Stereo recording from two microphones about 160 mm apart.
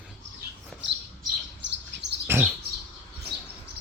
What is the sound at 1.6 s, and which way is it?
Bird, 90° right.